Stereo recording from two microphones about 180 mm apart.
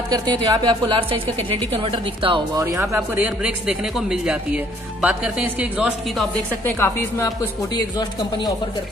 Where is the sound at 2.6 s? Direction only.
15° right (ahead or behind).